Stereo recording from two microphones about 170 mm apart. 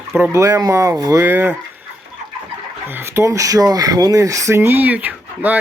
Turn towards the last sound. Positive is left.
turn(degrees=-10)  # may be behind; listen again after turning